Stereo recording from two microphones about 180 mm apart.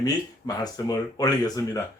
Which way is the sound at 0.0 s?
20° left (ahead or behind).